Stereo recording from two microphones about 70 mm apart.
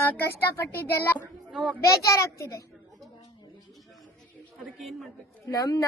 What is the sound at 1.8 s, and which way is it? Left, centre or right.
Speech, left.